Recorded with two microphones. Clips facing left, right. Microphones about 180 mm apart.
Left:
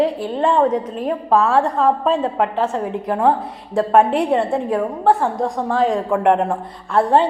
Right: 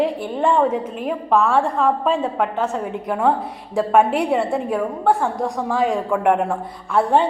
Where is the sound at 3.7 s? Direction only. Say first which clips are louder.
Left 2 dB; centre (ahead or behind).